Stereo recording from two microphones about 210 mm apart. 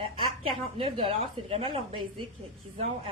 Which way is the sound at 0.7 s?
25° right (ahead or behind).